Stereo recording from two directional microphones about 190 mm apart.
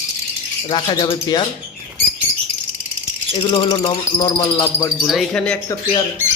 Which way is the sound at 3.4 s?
20° left (ahead or behind).